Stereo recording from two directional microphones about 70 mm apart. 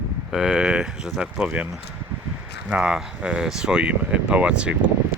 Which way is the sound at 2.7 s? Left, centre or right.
Centre.